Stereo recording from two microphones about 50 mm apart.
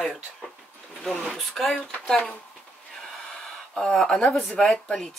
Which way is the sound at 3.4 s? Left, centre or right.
Centre.